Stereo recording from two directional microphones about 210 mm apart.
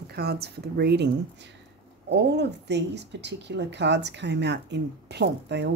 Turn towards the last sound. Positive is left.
turn(degrees=-55)  # may be behind; listen again after turning